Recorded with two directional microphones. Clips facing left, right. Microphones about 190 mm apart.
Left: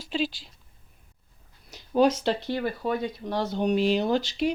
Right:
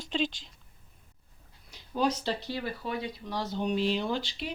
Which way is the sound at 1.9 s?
85° left.